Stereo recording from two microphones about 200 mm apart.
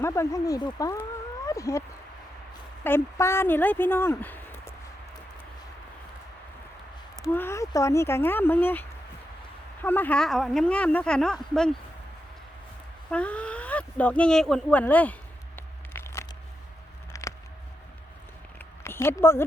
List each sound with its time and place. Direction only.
0.0 s speech: 15° left (ahead or behind)
2.8 s speech: 10° left (ahead or behind)
7.2 s speech: 15° left (ahead or behind)
13.1 s speech: 5° left (ahead or behind)
15.5 s a sound: 10° left (ahead or behind)
18.9 s speech: 10° left (ahead or behind)